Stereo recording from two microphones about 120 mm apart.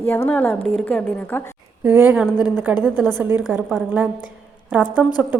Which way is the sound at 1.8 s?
15° right (ahead or behind).